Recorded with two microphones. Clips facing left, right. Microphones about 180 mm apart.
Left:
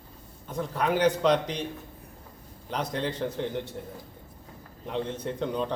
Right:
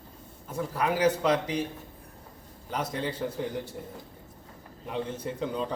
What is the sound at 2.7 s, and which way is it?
A man's voice, 5° right (ahead or behind).